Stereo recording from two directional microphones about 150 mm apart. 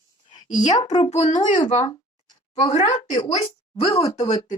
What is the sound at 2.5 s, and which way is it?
A woman's voice, 50° left (ahead or behind).